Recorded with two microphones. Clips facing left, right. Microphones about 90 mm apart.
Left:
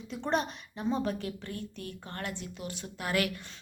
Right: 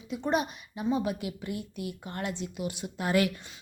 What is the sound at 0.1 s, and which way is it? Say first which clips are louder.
A woman's voice: right 2 dB; 5° right (ahead or behind).